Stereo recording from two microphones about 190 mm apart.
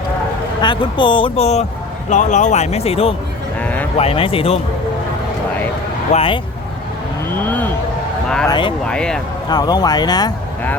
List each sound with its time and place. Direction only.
0.6 s speech: 25° left (ahead or behind)
3.6 s a sound: 10° left (ahead or behind)
3.9 s speech: 30° left (ahead or behind)
6.1 s speech: 30° left (ahead or behind)
7.3 s speech: 10° left (ahead or behind)
8.4 s speech: 25° left (ahead or behind)
8.9 s speech: 5° left (ahead or behind)
9.5 s speech: 20° left (ahead or behind)